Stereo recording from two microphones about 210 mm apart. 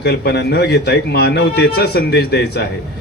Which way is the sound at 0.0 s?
50° left (ahead or behind).